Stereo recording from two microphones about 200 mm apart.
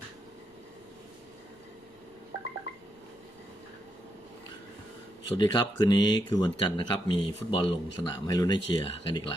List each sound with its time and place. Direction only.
5.4 s speech: 20° left (ahead or behind)